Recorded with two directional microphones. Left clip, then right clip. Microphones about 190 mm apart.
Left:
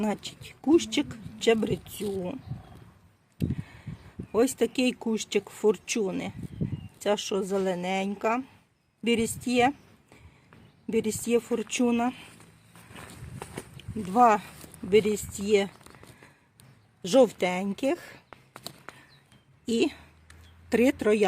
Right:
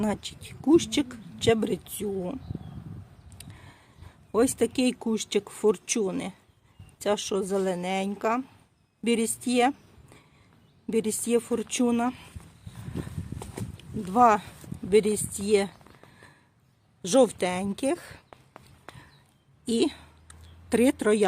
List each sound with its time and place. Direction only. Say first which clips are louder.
0.0 s speech: right 1 dB; 5° right (ahead or behind)
3.3 s a sound: left 13 dB; centre (ahead or behind)
4.3 s a woman's voice: right 1 dB; centre (ahead or behind)
13.4 s speech: left 2 dB; centre (ahead or behind)
17.0 s speech: even; centre (ahead or behind)
18.3 s a sound: left 6 dB; 35° left (ahead or behind)
19.6 s a woman's voice: right 1 dB; centre (ahead or behind)